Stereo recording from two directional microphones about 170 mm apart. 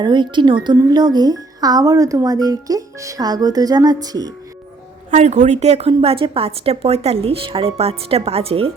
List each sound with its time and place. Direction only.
0.0 s speech: 25° right (ahead or behind)
5.1 s a woman's voice: 45° right (ahead or behind)